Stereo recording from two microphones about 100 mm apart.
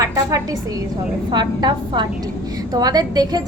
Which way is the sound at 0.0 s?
35° right (ahead or behind).